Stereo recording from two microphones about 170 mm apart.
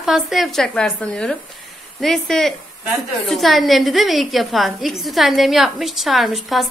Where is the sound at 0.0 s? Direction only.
Centre (ahead or behind).